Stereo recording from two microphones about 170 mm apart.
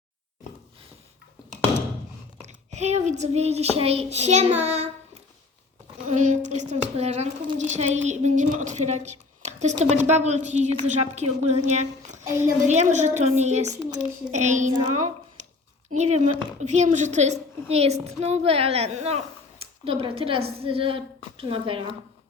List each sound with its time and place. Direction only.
2.6 s a woman's voice: 40° right (ahead or behind)
6.1 s speech: 45° right (ahead or behind)
15.4 s a sound: 45° right (ahead or behind)
15.9 s a woman's voice: 40° right (ahead or behind)